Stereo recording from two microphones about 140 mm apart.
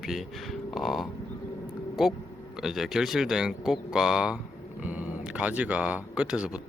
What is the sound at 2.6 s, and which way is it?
A man's voice, 5° right (ahead or behind).